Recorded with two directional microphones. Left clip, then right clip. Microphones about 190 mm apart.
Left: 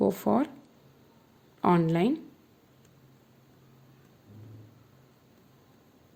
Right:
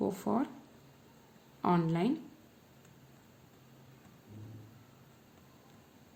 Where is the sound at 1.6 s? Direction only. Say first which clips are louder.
Left 6 dB; 45° left (ahead or behind).